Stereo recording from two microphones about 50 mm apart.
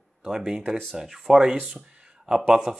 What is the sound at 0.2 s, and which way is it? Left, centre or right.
Speech, centre.